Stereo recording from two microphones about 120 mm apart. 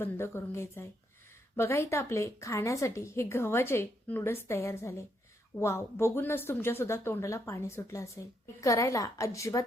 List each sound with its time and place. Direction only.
0.0 s a woman's voice: 20° left (ahead or behind)